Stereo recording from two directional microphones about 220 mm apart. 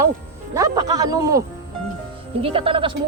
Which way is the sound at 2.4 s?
25° right (ahead or behind).